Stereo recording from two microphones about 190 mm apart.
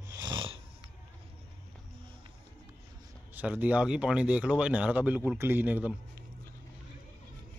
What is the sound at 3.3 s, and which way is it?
Speech, 10° right (ahead or behind).